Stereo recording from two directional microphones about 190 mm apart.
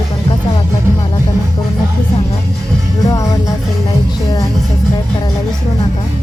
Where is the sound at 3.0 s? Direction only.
15° left (ahead or behind).